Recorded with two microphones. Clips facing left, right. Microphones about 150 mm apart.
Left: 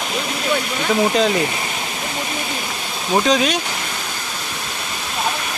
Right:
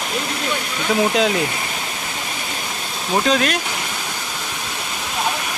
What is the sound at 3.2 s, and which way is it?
Speech, centre (ahead or behind).